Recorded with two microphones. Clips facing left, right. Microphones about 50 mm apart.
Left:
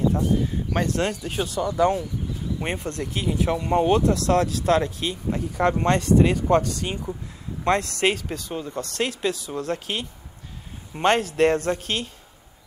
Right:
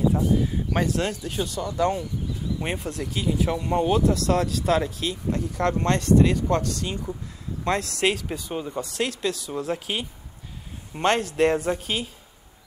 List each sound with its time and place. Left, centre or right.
0.1 s speech: centre
1.2 s speech: left
1.7 s speech: centre
2.6 s speech: centre
3.1 s speech: centre
8.4 s speech: centre
9.0 s speech: centre